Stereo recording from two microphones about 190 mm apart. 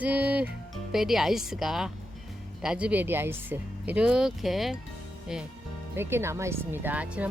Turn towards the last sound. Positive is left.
turn(degrees=-5)  # may be behind; listen again after turning